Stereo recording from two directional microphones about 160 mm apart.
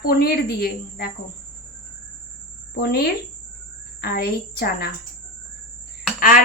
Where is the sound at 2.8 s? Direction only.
80° left.